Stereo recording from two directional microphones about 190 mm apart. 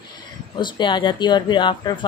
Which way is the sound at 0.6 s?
25° left (ahead or behind).